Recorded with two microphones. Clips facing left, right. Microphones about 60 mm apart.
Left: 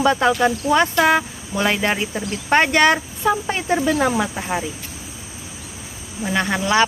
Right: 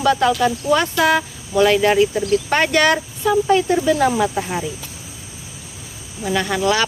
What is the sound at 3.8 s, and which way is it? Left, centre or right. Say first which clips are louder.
Speech: right 2 dB; centre.